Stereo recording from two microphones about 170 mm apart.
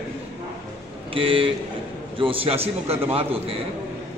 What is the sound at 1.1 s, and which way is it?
A man's voice, 30° right (ahead or behind).